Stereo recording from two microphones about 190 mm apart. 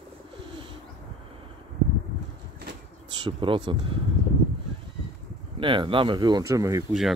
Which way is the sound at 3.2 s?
25° right (ahead or behind).